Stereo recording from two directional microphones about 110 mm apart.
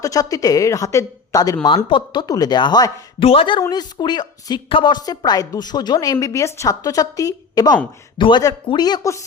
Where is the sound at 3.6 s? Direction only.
40° left (ahead or behind).